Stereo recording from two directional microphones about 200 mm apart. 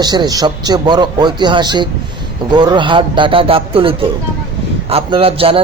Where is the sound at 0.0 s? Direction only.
20° right (ahead or behind).